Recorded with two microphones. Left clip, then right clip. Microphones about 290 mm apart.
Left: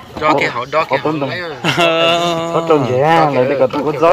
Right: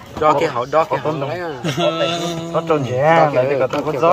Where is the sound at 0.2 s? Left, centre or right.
Right.